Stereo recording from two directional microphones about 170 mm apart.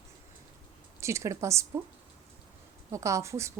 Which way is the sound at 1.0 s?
15° right (ahead or behind).